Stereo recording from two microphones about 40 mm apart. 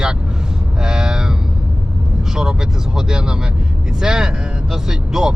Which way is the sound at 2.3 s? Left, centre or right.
Centre.